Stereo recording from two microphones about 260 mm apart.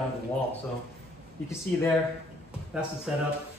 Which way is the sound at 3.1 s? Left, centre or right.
Centre.